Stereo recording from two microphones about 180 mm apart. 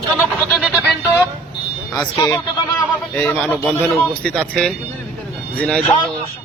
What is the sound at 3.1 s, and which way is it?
Speech, 10° left (ahead or behind).